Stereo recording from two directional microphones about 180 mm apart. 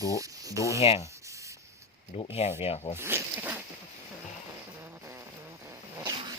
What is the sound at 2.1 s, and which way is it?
Speech, 30° left (ahead or behind).